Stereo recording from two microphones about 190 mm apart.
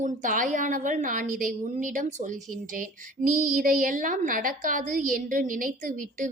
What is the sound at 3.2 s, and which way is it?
A woman's voice, 45° right (ahead or behind).